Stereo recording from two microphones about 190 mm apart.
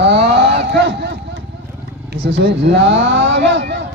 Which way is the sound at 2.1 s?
65° right (ahead or behind).